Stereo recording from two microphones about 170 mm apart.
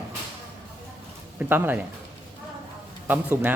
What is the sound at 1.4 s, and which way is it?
Speech, 10° right (ahead or behind).